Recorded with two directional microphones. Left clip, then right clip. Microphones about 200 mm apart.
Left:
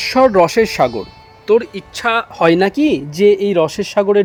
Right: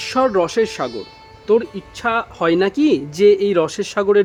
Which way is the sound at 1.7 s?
30° left (ahead or behind).